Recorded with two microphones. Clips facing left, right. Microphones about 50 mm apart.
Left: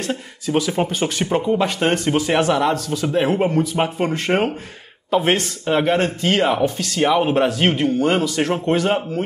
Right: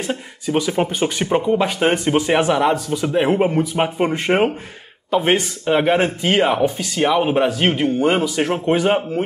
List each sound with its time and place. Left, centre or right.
0.0 s speech: centre
5.1 s a man's voice: centre